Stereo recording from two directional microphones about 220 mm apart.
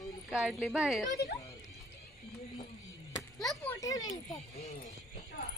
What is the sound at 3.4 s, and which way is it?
Speech, 10° left (ahead or behind).